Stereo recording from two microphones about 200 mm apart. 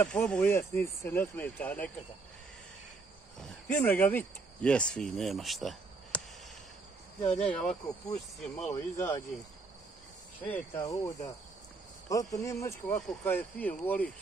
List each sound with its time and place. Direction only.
0.0 s speech: 5° left (ahead or behind)
3.3 s speech: 5° left (ahead or behind)
7.3 s cricket: 5° left (ahead or behind)
8.5 s speech: 15° left (ahead or behind)
10.4 s speech: 10° left (ahead or behind)